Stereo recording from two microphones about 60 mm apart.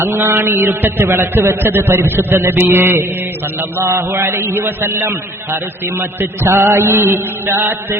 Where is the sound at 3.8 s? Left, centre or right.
Right.